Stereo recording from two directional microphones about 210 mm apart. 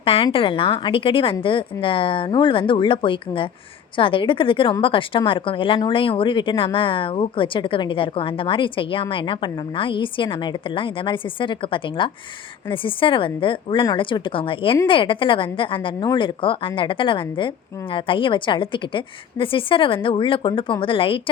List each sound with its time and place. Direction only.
0.0 s a woman's voice: 25° left (ahead or behind)